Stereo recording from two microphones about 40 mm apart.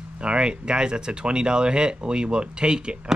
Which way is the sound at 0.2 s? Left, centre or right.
Right.